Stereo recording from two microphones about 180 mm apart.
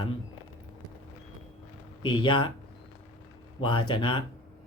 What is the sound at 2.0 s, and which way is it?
Speech, 25° left (ahead or behind).